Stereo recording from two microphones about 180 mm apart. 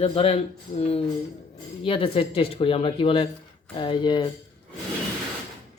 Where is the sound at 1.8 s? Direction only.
30° left (ahead or behind).